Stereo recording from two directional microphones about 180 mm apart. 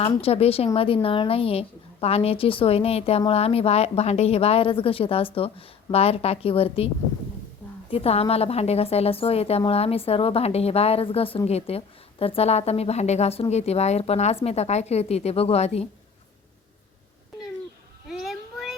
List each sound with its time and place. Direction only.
0.2 s a woman's voice: 35° left (ahead or behind)
18.1 s child singing: centre (ahead or behind)